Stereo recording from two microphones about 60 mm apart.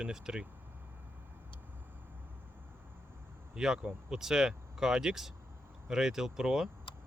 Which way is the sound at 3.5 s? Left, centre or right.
Centre.